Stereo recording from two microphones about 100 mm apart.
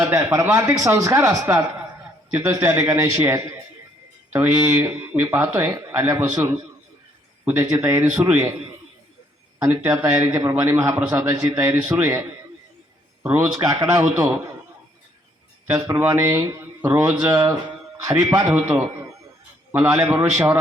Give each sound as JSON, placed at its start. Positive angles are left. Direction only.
{"t": 0.0, "sound": "speech", "side_deg": -30}
{"t": 9.8, "sound": "speech", "side_deg": -25}
{"t": 13.2, "sound": "a man's voice", "side_deg": -15}
{"t": 13.7, "sound": "a man's voice", "side_deg": -35}
{"t": 15.6, "sound": "speech", "side_deg": -20}